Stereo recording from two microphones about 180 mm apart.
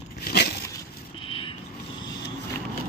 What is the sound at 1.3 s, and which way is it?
Vehicle, 30° left (ahead or behind).